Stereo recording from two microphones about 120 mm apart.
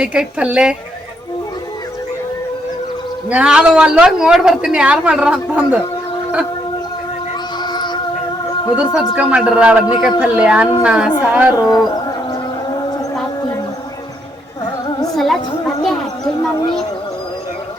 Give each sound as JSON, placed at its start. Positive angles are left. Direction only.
{"t": 0.0, "sound": "a woman's voice", "side_deg": -10}
{"t": 3.2, "sound": "a woman's voice", "side_deg": -10}
{"t": 7.6, "sound": "music", "side_deg": 40}
{"t": 8.7, "sound": "a woman's voice", "side_deg": -5}
{"t": 11.6, "sound": "speech", "side_deg": 0}
{"t": 11.9, "sound": "a sound", "side_deg": 30}
{"t": 15.1, "sound": "speech", "side_deg": 0}